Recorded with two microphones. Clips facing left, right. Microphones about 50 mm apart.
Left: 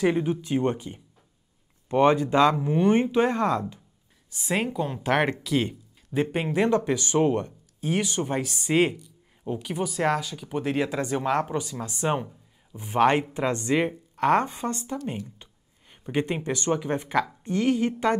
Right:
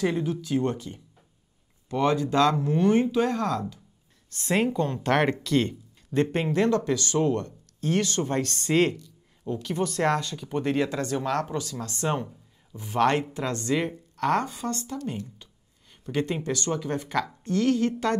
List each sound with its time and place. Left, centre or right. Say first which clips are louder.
0.0 s speech: left 3 dB; left
2.9 s speech: left 2 dB; left
4.3 s speech: right 2 dB; centre